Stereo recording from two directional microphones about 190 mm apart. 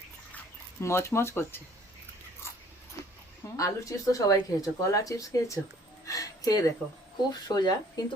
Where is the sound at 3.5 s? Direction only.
15° left (ahead or behind).